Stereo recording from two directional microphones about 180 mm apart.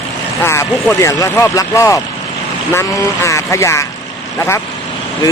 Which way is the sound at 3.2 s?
15° left (ahead or behind).